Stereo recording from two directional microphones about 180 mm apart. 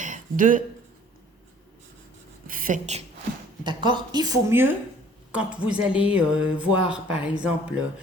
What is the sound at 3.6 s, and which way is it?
Speech, 25° right (ahead or behind).